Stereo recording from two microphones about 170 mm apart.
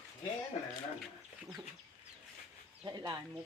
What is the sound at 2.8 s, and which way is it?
Speech, 25° right (ahead or behind).